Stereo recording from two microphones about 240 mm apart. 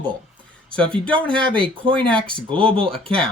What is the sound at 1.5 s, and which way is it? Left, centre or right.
Speech, right.